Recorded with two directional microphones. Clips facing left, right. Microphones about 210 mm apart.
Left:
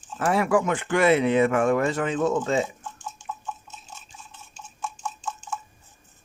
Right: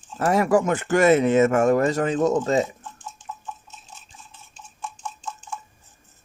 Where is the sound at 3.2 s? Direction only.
Centre (ahead or behind).